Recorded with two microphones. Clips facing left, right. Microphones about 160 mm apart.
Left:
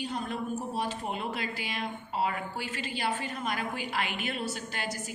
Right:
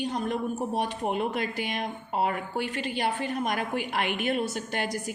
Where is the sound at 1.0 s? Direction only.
50° right (ahead or behind).